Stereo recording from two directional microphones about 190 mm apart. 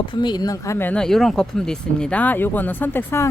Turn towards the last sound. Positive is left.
turn(degrees=10)  # may be behind; listen again after turning